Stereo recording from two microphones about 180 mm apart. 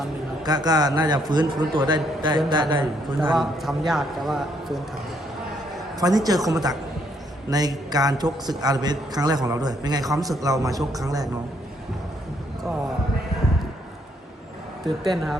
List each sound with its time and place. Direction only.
0.4 s a man's voice: 20° right (ahead or behind)
3.3 s a man's voice: centre (ahead or behind)
6.0 s a man's voice: 20° right (ahead or behind)
14.8 s a man's voice: centre (ahead or behind)